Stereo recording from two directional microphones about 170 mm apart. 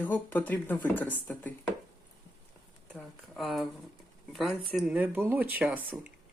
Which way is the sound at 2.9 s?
Centre (ahead or behind).